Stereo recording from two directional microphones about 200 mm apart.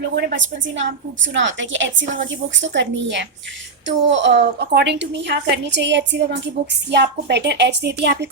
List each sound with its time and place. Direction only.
0.2 s a woman's voice: 65° right (ahead or behind)